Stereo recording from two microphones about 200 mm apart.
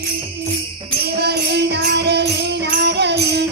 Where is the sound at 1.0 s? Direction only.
55° right (ahead or behind).